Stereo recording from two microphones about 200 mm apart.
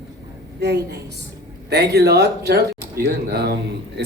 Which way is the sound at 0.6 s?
55° right (ahead or behind).